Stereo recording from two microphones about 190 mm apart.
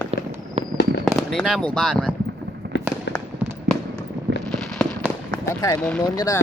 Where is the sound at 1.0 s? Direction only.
Centre (ahead or behind).